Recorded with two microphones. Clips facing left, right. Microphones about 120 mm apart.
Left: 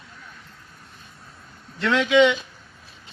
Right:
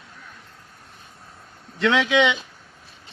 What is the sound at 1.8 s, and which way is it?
Speech, 75° right (ahead or behind).